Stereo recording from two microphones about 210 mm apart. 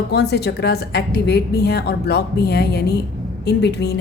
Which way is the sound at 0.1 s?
50° left (ahead or behind).